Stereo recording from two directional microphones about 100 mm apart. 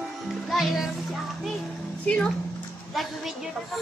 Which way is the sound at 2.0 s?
10° left (ahead or behind).